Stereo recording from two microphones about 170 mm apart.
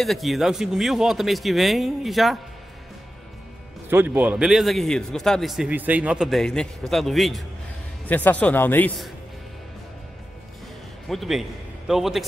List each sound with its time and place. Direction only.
0.0 s a man's voice: centre (ahead or behind)
3.9 s a man's voice: 10° right (ahead or behind); by 9.1 s 5° left (ahead or behind)
11.1 s a man's voice: centre (ahead or behind)